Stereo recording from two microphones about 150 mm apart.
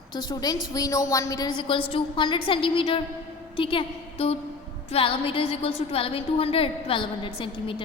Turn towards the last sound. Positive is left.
turn(degrees=35)  # may be behind; listen again after turning